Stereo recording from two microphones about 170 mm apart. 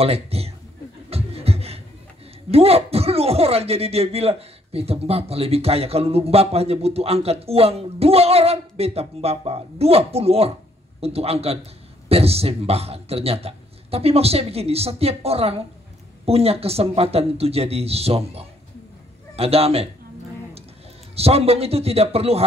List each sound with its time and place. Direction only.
0.0 s speech: 35° right (ahead or behind)
1.1 s beatboxing: 35° right (ahead or behind)
2.5 s speech: 35° right (ahead or behind)
21.1 s speech: 35° right (ahead or behind)